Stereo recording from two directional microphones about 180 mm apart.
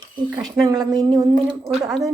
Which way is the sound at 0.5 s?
20° right (ahead or behind).